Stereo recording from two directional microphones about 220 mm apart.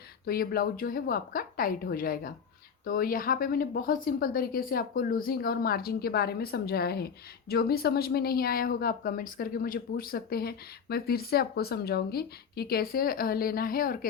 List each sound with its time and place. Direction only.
0.3 s a woman's voice: 45° left (ahead or behind)